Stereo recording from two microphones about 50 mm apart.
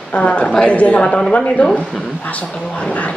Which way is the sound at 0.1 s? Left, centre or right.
Left.